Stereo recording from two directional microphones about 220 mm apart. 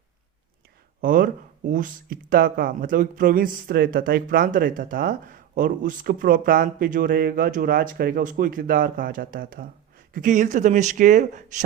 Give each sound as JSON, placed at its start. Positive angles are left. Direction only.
{"t": 1.0, "sound": "speech", "side_deg": -40}